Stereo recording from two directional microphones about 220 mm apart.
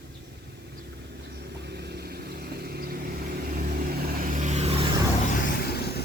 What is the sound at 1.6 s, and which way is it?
Vehicle, 45° right (ahead or behind).